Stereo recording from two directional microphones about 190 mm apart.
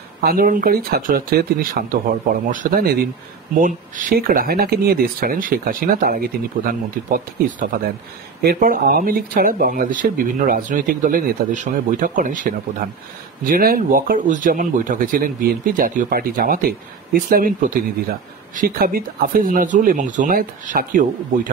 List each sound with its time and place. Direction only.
0.2 s speech: 50° right (ahead or behind)